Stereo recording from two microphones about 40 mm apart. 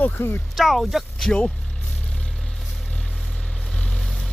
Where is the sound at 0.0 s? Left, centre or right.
Left.